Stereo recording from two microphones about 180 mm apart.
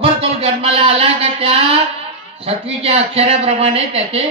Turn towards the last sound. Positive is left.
turn(degrees=-35)  # may be behind; listen again after turning